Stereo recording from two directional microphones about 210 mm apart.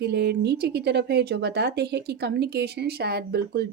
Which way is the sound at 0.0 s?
50° right (ahead or behind).